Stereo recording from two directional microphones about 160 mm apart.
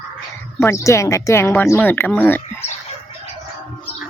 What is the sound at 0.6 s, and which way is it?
Speech, 15° left (ahead or behind).